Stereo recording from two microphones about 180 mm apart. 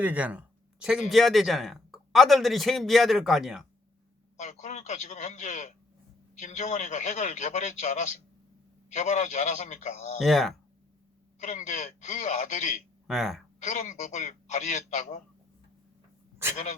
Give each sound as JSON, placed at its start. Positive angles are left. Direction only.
{"t": 0.0, "sound": "a man's voice", "side_deg": -10}
{"t": 4.4, "sound": "a man's voice", "side_deg": 40}
{"t": 10.2, "sound": "a man's voice", "side_deg": 0}
{"t": 11.3, "sound": "speech", "side_deg": 40}
{"t": 13.1, "sound": "a man's voice", "side_deg": 0}
{"t": 13.7, "sound": "a man's voice", "side_deg": 40}